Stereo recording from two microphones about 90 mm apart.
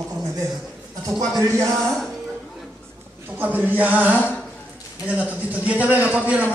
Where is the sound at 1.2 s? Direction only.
35° right (ahead or behind).